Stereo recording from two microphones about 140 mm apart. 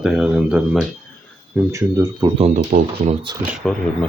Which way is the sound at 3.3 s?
30° right (ahead or behind).